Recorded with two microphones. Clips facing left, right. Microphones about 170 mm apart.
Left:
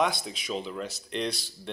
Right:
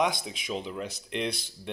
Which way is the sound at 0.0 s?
15° right (ahead or behind).